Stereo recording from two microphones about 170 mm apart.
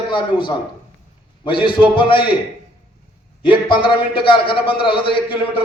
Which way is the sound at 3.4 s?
30° left (ahead or behind).